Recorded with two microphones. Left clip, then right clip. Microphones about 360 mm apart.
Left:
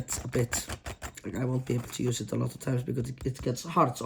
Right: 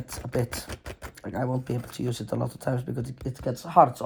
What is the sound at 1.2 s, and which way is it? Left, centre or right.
Speech, centre.